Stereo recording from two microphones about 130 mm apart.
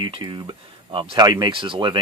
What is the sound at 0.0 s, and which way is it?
Speech, 40° right (ahead or behind).